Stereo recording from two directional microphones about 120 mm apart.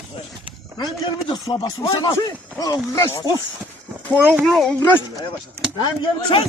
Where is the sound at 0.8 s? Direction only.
35° left (ahead or behind).